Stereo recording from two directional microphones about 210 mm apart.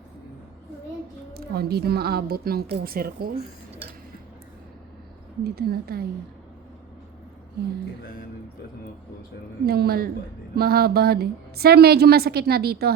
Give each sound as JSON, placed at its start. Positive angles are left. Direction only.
{"t": 1.3, "sound": "a woman's voice", "side_deg": -50}
{"t": 5.4, "sound": "a woman's voice", "side_deg": -45}
{"t": 9.6, "sound": "a woman's voice", "side_deg": -50}